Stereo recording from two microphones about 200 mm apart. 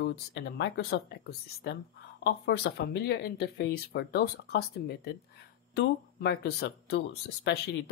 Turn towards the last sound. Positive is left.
turn(degrees=60)  # may be behind; listen again after turning